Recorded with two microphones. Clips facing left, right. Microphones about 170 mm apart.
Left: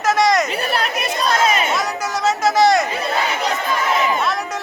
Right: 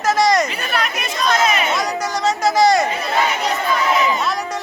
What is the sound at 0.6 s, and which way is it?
Speech, 30° left (ahead or behind).